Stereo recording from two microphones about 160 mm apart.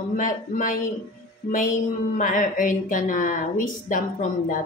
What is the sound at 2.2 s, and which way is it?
Speech, 55° left (ahead or behind).